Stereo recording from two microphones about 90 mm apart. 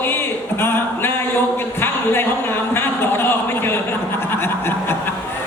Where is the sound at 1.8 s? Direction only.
25° left (ahead or behind).